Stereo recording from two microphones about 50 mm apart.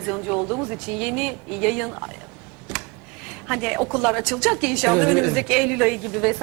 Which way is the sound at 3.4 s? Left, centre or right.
Centre.